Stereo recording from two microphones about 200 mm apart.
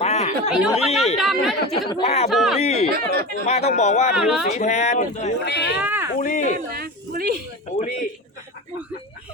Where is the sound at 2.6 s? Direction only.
30° left (ahead or behind).